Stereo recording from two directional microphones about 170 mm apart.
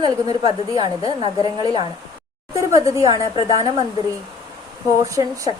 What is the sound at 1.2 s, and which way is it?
Speech, 30° left (ahead or behind).